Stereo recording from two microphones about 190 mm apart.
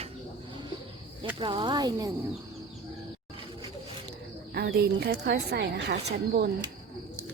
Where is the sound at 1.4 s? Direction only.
25° right (ahead or behind).